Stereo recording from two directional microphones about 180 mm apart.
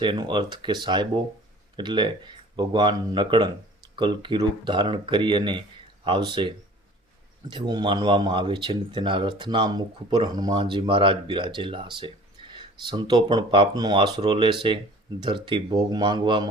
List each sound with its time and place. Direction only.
0.0 s speech: 25° right (ahead or behind)
7.5 s speech: 25° right (ahead or behind)